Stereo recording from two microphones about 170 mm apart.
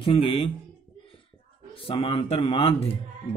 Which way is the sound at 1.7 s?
35° left (ahead or behind).